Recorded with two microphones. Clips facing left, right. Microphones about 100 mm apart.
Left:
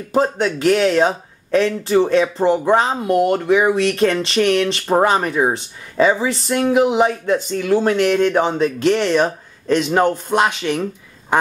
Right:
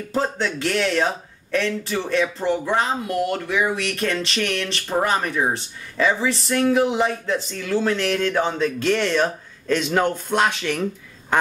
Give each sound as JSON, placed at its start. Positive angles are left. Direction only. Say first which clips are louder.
{"t": 0.1, "sound": "speech", "louder": "left 6 dB", "side_deg": 15}